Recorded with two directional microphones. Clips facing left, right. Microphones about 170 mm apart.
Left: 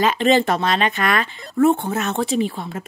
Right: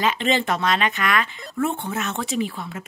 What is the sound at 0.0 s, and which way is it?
A woman's voice, 40° left (ahead or behind).